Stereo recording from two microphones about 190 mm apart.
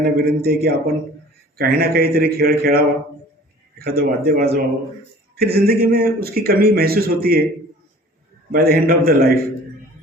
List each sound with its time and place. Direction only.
0.0 s a man's voice: 55° right (ahead or behind)
8.5 s a man's voice: 55° right (ahead or behind)